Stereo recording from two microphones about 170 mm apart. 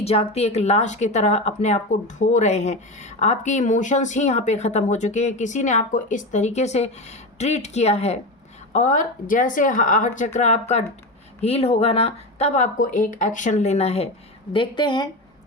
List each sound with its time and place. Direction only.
0.0 s speech: 35° left (ahead or behind)